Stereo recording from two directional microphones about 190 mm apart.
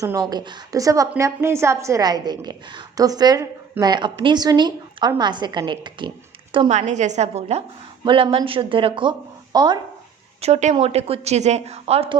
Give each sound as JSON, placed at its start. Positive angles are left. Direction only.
{"t": 0.0, "sound": "a woman's voice", "side_deg": -20}
{"t": 10.4, "sound": "a woman's voice", "side_deg": -35}